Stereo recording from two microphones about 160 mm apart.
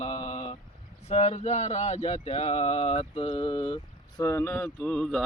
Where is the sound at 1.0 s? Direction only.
40° left (ahead or behind).